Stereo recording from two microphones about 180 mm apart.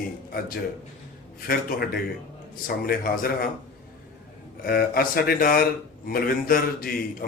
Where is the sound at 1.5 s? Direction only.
55° left (ahead or behind).